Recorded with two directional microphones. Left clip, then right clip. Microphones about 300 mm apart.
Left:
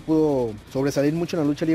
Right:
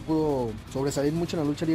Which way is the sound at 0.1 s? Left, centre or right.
Left.